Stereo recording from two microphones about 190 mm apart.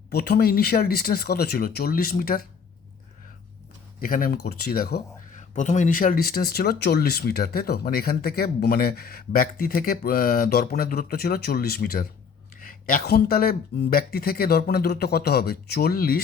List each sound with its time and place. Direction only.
0.1 s speech: 55° left (ahead or behind)
4.0 s speech: 50° left (ahead or behind)
5.4 s speech: 40° left (ahead or behind)